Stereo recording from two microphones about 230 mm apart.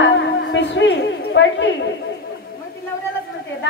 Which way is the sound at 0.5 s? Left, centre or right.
Left.